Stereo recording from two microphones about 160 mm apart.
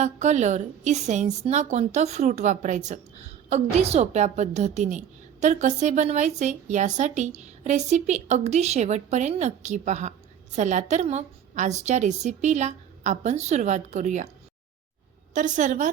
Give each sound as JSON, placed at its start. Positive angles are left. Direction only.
{"t": 0.0, "sound": "a woman's voice", "side_deg": -45}
{"t": 15.4, "sound": "a woman's voice", "side_deg": -50}